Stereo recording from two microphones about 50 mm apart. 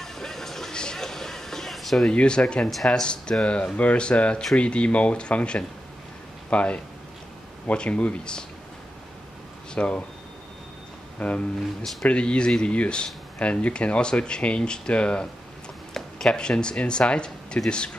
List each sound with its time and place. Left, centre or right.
0.0 s vehicle: centre
2.0 s speech: centre
9.8 s speech: left
11.1 s speech: left